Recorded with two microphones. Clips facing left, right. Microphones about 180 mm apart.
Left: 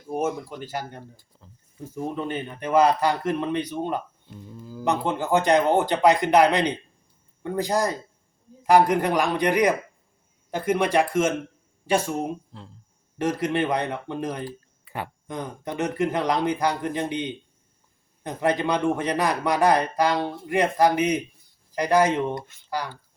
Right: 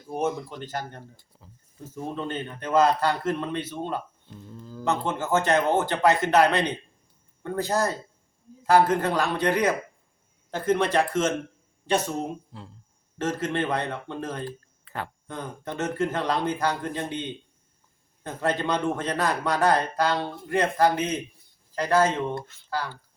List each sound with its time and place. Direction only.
0.1 s a man's voice: 5° left (ahead or behind)
1.3 s speech: 5° right (ahead or behind)
1.8 s a man's voice: 15° left (ahead or behind)
13.1 s a man's voice: 15° left (ahead or behind)